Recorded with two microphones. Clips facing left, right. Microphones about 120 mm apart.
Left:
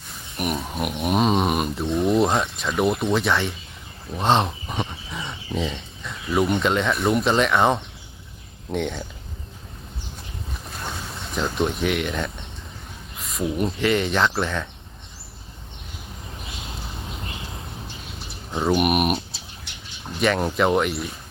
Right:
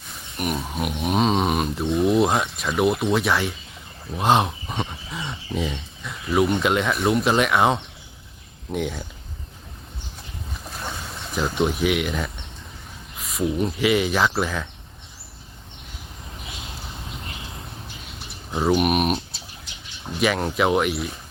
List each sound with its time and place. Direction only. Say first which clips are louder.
0.1 s speech: even; centre (ahead or behind)
10.7 s a sound: even; centre (ahead or behind)
13.1 s speech: right 1 dB; centre (ahead or behind)
18.5 s speech: even; centre (ahead or behind)
19.7 s bird: left 1 dB; 65° left (ahead or behind)
20.1 s speech: left 1 dB; centre (ahead or behind)